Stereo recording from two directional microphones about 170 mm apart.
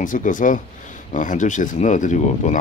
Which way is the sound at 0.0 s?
50° left (ahead or behind).